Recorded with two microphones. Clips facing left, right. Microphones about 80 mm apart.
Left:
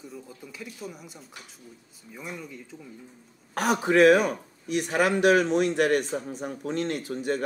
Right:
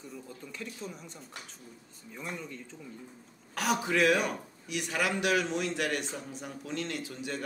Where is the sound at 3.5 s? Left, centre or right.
Left.